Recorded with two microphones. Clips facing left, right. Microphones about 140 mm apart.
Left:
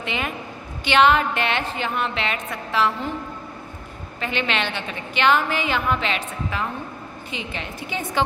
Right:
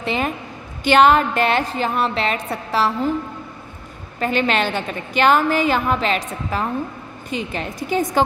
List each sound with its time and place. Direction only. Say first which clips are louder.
0.0 s a woman's voice: right 5 dB; 35° right (ahead or behind)
4.2 s a woman's voice: right 6 dB; 45° right (ahead or behind)